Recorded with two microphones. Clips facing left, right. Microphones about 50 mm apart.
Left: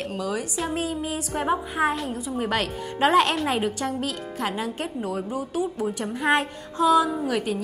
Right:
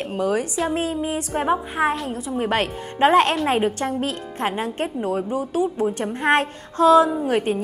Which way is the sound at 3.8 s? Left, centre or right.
Right.